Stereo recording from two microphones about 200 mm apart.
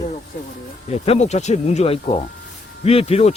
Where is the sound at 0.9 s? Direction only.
30° left (ahead or behind).